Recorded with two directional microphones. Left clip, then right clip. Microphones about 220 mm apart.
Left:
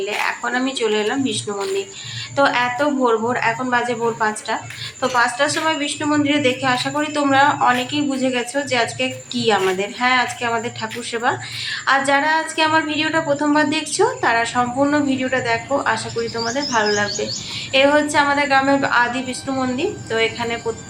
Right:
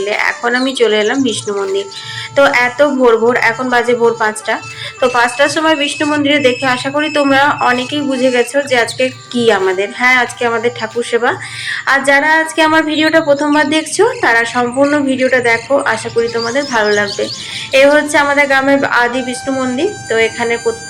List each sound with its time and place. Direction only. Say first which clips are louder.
0.0 s a woman's voice: right 7 dB; 20° right (ahead or behind)